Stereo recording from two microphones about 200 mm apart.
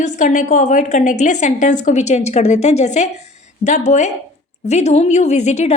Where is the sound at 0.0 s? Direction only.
40° left (ahead or behind).